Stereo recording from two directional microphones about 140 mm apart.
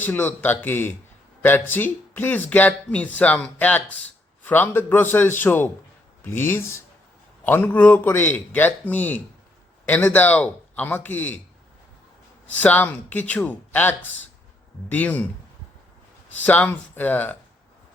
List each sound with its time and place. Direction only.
0.0 s speech: 15° left (ahead or behind)
12.5 s speech: 10° left (ahead or behind)
16.4 s speech: 10° left (ahead or behind)